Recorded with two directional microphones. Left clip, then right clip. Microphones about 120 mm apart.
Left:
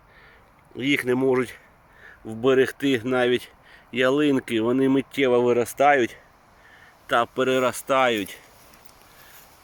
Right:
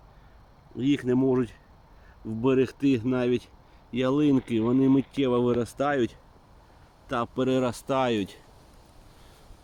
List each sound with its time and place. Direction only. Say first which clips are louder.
0.8 s speech: left 3 dB; 5° right (ahead or behind); by 8.4 s 35° right (ahead or behind)